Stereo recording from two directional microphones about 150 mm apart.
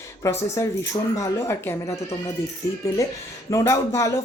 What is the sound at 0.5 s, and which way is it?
Speech, 20° left (ahead or behind).